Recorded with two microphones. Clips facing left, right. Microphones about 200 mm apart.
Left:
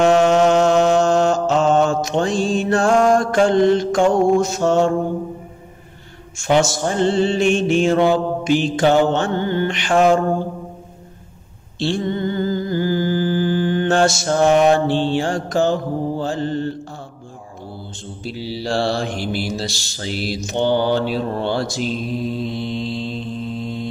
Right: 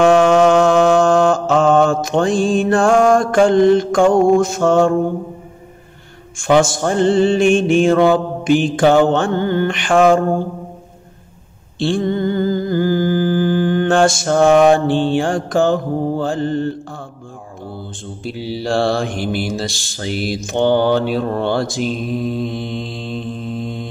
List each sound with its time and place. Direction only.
0.0 s mantra: 50° right (ahead or behind)
6.3 s mantra: 50° right (ahead or behind)
11.8 s a sound: 50° right (ahead or behind)
18.2 s mantra: 55° right (ahead or behind)